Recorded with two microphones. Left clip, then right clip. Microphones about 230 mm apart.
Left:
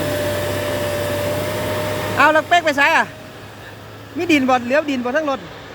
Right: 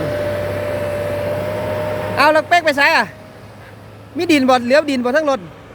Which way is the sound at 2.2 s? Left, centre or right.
Centre.